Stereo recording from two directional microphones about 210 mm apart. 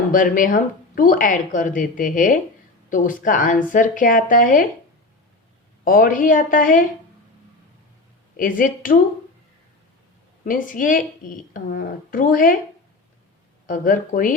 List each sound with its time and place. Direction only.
0.1 s speech: 40° left (ahead or behind)
5.8 s speech: 40° left (ahead or behind)
8.4 s speech: 40° left (ahead or behind)
10.4 s speech: 40° left (ahead or behind)
13.7 s speech: 40° left (ahead or behind)